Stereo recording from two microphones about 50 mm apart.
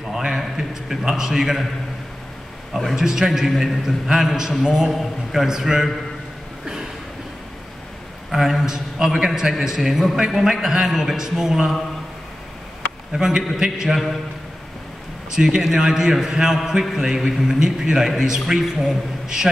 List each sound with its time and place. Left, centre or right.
0.1 s a man's voice: centre
2.7 s a man's voice: centre
8.3 s a man's voice: centre
13.1 s a man's voice: centre
15.3 s a man's voice: centre